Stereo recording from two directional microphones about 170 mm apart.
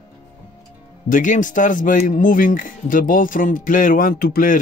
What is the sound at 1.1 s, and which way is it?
Speech, 50° left (ahead or behind).